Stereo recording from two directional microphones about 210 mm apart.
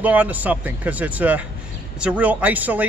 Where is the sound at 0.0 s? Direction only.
5° right (ahead or behind).